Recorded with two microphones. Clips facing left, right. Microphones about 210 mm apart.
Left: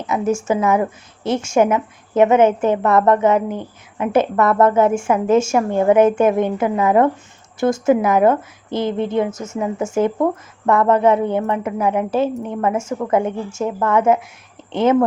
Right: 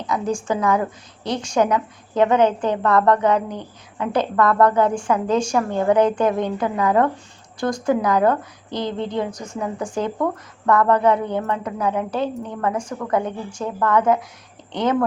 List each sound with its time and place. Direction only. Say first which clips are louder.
0.0 s a woman's voice: left 4 dB; 25° left (ahead or behind)